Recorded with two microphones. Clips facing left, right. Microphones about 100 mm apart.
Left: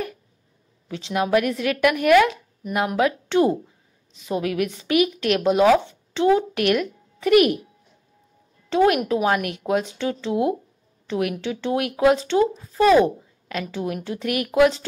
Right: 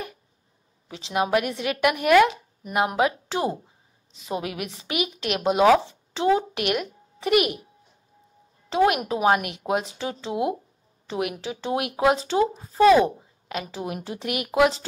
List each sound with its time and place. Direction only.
0.8 s a woman's voice: 25° right (ahead or behind)
8.6 s speech: 20° right (ahead or behind)
9.8 s speech: 30° right (ahead or behind)
10.3 s speech: 15° right (ahead or behind)